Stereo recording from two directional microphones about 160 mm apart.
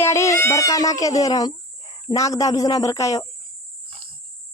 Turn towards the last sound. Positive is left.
turn(degrees=20)  # may be behind; listen again after turning